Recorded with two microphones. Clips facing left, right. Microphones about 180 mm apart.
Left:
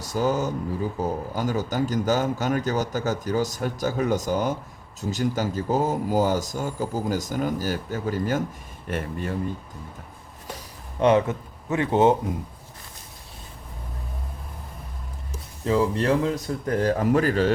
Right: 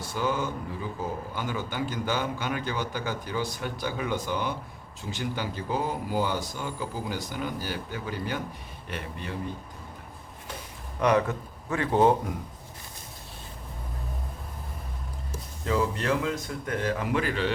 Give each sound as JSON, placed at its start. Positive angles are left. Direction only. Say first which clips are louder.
{"t": 0.0, "sound": "speech", "louder": "left 5 dB", "side_deg": 40}
{"t": 11.0, "sound": "speech", "louder": "left 4 dB", "side_deg": 25}
{"t": 15.6, "sound": "speech", "louder": "left 5 dB", "side_deg": 30}